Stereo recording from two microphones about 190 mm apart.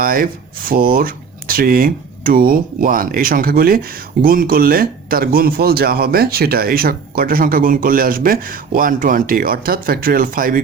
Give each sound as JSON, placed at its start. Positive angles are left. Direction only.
{"t": 0.0, "sound": "speech", "side_deg": -50}